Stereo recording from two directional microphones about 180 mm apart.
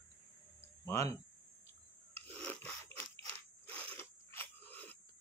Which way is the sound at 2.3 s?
10° left (ahead or behind).